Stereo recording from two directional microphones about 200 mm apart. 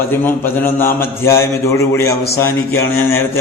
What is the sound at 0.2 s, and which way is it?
A man's voice, 10° left (ahead or behind).